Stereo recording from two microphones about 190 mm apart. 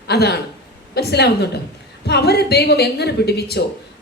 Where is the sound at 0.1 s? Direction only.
60° left (ahead or behind).